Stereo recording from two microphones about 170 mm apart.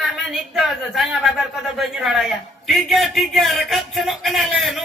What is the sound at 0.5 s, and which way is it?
A man's voice, centre (ahead or behind).